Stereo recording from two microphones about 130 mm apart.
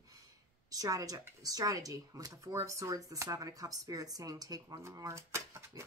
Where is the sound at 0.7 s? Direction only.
30° right (ahead or behind).